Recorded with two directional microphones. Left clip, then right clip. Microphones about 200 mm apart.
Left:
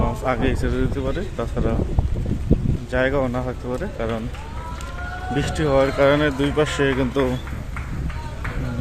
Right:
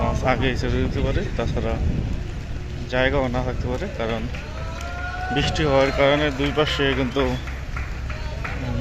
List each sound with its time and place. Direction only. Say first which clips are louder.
0.3 s speech: even; 20° left (ahead or behind)
2.9 s speech: even; 20° left (ahead or behind)
5.3 s speech: even; 25° left (ahead or behind)